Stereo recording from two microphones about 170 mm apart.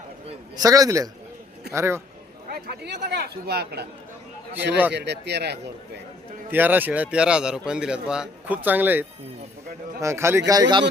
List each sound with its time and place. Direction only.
0.5 s a man's voice: 20° right (ahead or behind)
2.5 s speech: 75° right (ahead or behind)
4.9 s speech: 85° right
6.5 s a man's voice: 10° right (ahead or behind)